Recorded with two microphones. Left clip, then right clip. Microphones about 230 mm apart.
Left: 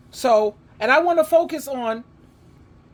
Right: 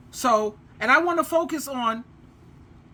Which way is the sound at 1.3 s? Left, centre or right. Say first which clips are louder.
Left 6 dB; centre.